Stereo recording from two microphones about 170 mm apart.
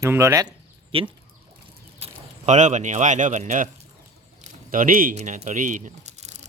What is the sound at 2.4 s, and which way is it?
Speech, 45° right (ahead or behind).